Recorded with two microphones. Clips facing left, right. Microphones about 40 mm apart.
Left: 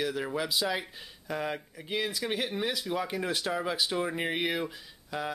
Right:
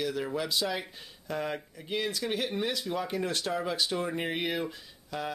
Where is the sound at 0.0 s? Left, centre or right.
Centre.